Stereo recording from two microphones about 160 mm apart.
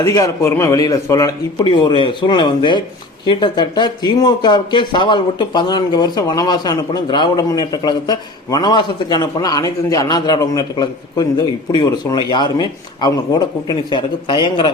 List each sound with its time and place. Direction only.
0.0 s speech: 20° left (ahead or behind)
1.6 s speech: 30° left (ahead or behind)